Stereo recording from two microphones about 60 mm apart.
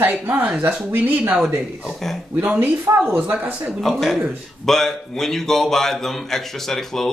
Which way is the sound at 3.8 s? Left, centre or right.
Centre.